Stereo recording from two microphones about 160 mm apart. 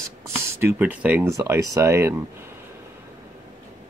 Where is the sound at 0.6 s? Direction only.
10° right (ahead or behind).